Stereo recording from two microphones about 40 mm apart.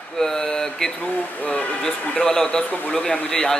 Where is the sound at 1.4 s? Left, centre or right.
Left.